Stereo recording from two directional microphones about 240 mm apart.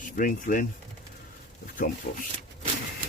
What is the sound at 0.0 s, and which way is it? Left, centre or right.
Speech, left.